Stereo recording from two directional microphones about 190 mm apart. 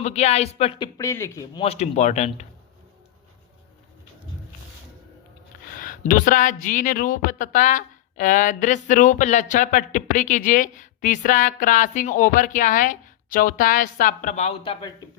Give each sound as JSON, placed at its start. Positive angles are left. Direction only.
{"t": 0.0, "sound": "speech", "side_deg": 35}
{"t": 1.6, "sound": "speech", "side_deg": 35}
{"t": 5.7, "sound": "a sound", "side_deg": 45}
{"t": 6.1, "sound": "speech", "side_deg": 45}